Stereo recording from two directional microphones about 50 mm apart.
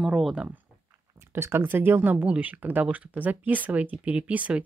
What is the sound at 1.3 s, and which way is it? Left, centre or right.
Speech, right.